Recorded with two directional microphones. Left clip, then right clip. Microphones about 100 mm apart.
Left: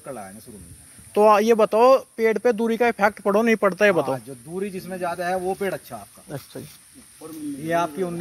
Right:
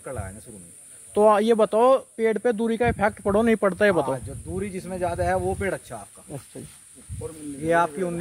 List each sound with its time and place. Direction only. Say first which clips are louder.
1.1 s speech: left 2 dB; 10° right (ahead or behind)
7.6 s speech: right 2 dB; 20° right (ahead or behind)